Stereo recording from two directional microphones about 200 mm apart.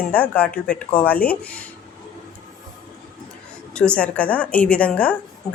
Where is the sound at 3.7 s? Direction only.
5° left (ahead or behind).